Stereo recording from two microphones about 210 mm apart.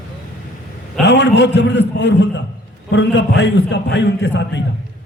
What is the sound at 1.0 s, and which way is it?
A man's voice, 55° left (ahead or behind).